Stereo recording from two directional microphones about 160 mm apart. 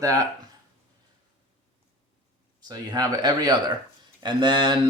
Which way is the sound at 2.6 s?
25° right (ahead or behind).